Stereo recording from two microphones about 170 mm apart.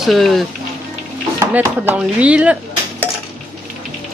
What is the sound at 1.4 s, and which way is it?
Speech, 15° right (ahead or behind).